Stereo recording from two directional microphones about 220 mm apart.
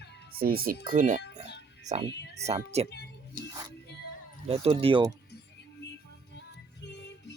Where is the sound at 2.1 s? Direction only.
50° left (ahead or behind).